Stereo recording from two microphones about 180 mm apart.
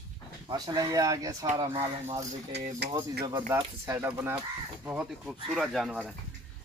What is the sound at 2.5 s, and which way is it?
Speech, 70° right (ahead or behind).